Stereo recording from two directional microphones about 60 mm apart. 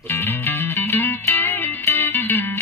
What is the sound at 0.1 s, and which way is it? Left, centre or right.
Music, left.